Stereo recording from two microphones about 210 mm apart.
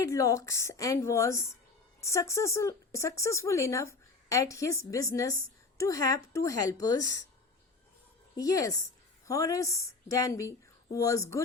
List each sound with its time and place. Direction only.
0.0 s speech: 15° left (ahead or behind)
8.4 s speech: 15° left (ahead or behind)